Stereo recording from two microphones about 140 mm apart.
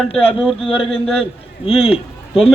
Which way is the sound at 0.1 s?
45° left (ahead or behind).